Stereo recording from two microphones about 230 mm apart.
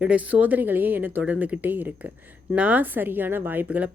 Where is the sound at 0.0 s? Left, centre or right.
Centre.